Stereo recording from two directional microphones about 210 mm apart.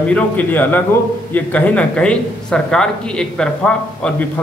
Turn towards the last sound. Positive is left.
turn(degrees=5)  # may be behind; listen again after turning